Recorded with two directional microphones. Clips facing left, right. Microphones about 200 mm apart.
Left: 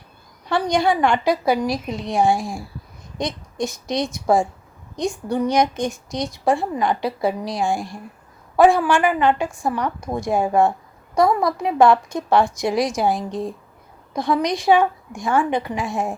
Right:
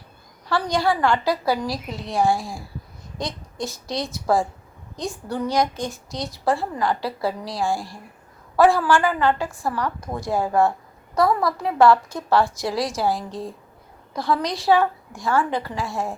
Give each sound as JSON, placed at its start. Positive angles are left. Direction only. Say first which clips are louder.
{"t": 0.4, "sound": "a woman's voice", "louder": "left 3 dB", "side_deg": 20}